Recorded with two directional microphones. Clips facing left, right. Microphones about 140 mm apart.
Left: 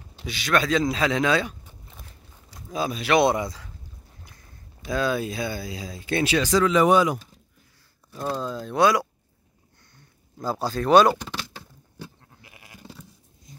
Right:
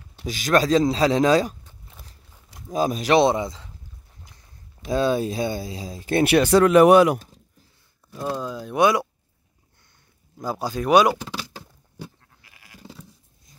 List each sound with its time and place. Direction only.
0.2 s speech: 40° right (ahead or behind)
2.0 s walk: 5° right (ahead or behind)
2.7 s speech: 40° right (ahead or behind)
3.2 s speech: 20° right (ahead or behind)
4.9 s speech: 35° right (ahead or behind)
6.2 s speech: 60° right (ahead or behind)
8.1 s speech: 5° right (ahead or behind)
10.3 s speech: 15° right (ahead or behind)
11.2 s a sound: 10° right (ahead or behind)
12.4 s goat: 20° left (ahead or behind)